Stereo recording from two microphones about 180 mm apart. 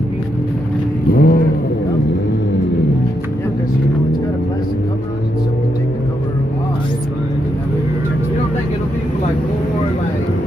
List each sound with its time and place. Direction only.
1.1 s vehicle: 55° left (ahead or behind)